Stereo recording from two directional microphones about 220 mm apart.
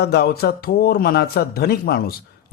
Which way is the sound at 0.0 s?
45° left (ahead or behind).